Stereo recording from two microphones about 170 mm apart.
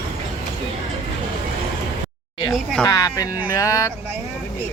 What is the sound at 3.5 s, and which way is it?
Speech, 20° left (ahead or behind).